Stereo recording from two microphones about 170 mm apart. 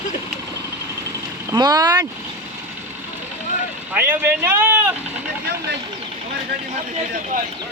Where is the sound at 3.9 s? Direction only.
10° right (ahead or behind).